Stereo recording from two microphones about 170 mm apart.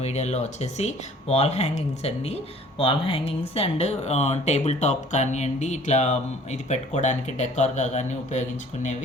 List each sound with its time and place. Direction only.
0.0 s speech: 40° left (ahead or behind)